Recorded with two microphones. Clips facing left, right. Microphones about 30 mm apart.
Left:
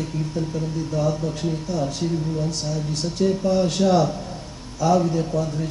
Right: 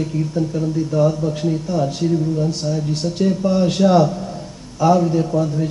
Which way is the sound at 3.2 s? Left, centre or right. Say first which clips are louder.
Right 2 dB; centre.